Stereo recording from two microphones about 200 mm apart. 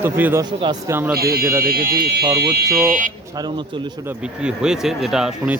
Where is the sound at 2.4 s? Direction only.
55° right (ahead or behind).